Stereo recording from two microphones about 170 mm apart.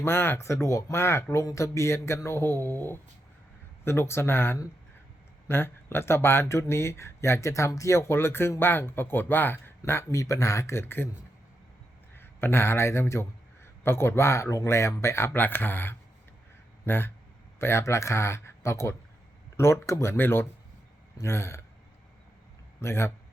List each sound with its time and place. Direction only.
0.0 s speech: 15° left (ahead or behind)
12.1 s speech: 15° left (ahead or behind)
22.8 s speech: 15° left (ahead or behind)